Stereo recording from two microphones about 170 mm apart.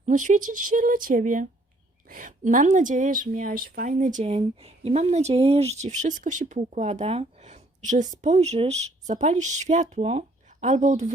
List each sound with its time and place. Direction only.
0.0 s speech: 50° right (ahead or behind)